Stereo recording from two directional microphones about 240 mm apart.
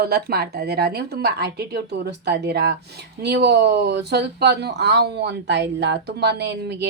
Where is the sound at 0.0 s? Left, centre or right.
Right.